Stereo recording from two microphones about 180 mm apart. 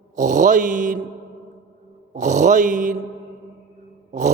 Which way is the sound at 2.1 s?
40° right (ahead or behind).